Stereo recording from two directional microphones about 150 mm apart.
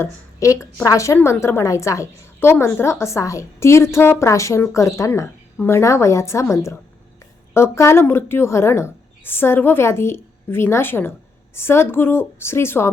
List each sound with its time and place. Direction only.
0.0 s a woman's voice: 20° left (ahead or behind)